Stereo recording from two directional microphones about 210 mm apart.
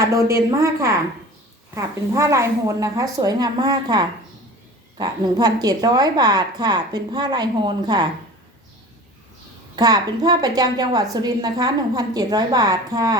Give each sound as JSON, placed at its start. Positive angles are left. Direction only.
{"t": 0.0, "sound": "a woman's voice", "side_deg": -15}
{"t": 9.7, "sound": "a woman's voice", "side_deg": -20}